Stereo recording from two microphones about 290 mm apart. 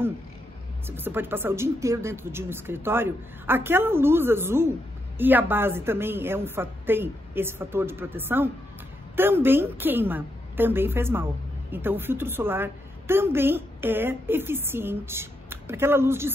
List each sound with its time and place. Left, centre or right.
0.8 s speech: centre